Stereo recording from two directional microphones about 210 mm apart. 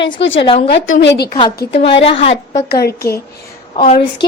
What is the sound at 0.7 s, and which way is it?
Speech, 55° left (ahead or behind).